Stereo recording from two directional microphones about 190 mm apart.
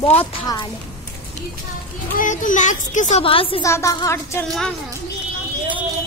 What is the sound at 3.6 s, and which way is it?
Speech, 15° left (ahead or behind).